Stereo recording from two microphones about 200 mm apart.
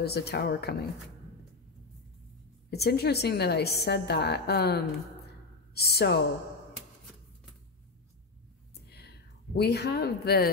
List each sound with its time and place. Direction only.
0.0 s a woman's voice: 55° left (ahead or behind)
2.7 s a woman's voice: 55° left (ahead or behind)
8.8 s a sound: 55° left (ahead or behind)